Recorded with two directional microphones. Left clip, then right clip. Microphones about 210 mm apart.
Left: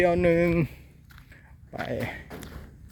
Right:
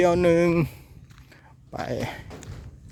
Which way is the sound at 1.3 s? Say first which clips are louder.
Right 3 dB; 25° right (ahead or behind).